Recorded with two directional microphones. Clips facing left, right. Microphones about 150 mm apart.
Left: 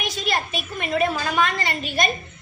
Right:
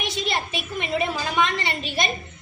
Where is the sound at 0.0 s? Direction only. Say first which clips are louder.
Left 1 dB; 25° right (ahead or behind).